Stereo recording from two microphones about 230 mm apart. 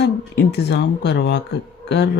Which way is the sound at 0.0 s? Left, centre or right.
Left.